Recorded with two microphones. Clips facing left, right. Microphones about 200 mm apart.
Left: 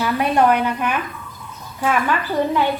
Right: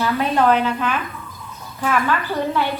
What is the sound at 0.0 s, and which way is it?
Speech, 15° left (ahead or behind).